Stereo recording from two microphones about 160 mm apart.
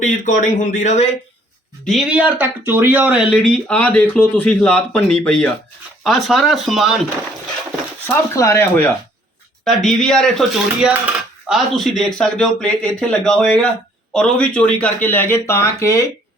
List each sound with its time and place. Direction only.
0.0 s speech: 55° left (ahead or behind)
2.1 s speech: 10° right (ahead or behind)
8.0 s a man's voice: 15° left (ahead or behind)
9.6 s a man's voice: 5° left (ahead or behind); by 16.0 s 20° left (ahead or behind)